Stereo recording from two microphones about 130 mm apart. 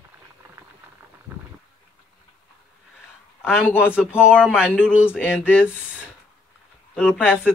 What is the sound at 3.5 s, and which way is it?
Speech, 5° right (ahead or behind).